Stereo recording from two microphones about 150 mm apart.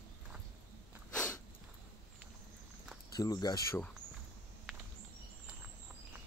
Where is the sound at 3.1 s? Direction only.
25° left (ahead or behind).